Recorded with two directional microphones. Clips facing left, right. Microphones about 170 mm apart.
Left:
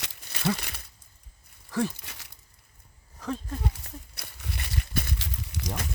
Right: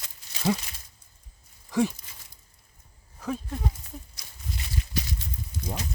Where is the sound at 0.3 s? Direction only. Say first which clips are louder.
Right 1 dB; 60° left (ahead or behind).